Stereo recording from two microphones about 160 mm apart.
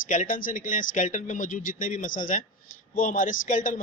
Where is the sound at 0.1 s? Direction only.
55° left (ahead or behind).